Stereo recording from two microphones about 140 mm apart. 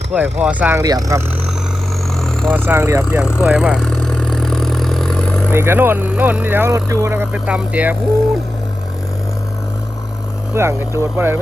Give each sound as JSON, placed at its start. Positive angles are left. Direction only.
{"t": 0.1, "sound": "speech", "side_deg": -10}
{"t": 0.8, "sound": "speech", "side_deg": -25}
{"t": 2.5, "sound": "speech", "side_deg": -15}
{"t": 3.4, "sound": "speech", "side_deg": -5}
{"t": 3.8, "sound": "vehicle", "side_deg": 5}
{"t": 5.5, "sound": "speech", "side_deg": -15}
{"t": 10.5, "sound": "speech", "side_deg": -20}